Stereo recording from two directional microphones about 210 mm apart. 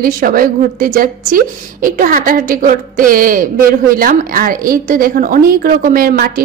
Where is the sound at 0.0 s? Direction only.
40° right (ahead or behind).